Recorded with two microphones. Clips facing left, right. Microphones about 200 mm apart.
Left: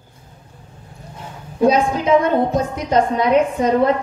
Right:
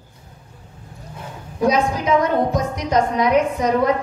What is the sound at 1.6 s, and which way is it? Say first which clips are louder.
A woman's voice: left 3 dB; 25° left (ahead or behind).